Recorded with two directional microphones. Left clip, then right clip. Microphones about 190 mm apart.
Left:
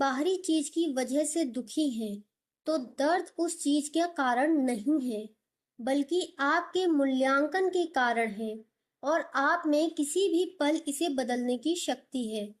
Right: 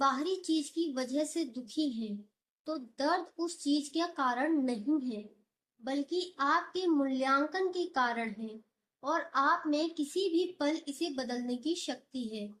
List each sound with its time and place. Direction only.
0.0 s a woman's voice: 50° left (ahead or behind)